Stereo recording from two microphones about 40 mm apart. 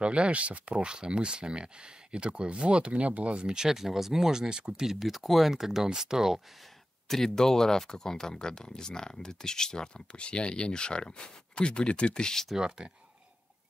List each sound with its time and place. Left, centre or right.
0.0 s speech: right
3.4 s speech: centre
7.1 s speech: centre
12.5 s speech: right